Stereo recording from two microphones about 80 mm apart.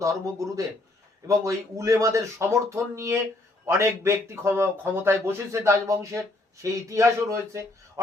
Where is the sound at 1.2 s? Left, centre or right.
Right.